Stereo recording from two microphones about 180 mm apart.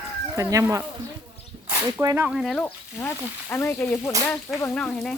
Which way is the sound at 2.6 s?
15° left (ahead or behind).